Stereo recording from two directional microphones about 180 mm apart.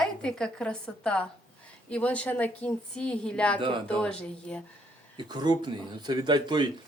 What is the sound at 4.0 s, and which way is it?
Speech, 5° left (ahead or behind).